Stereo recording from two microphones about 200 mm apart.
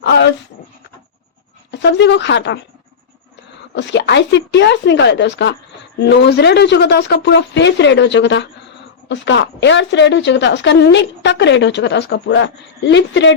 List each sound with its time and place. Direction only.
0.0 s a sound: 60° left (ahead or behind)
1.7 s speech: 60° left (ahead or behind)
3.8 s speech: 60° left (ahead or behind)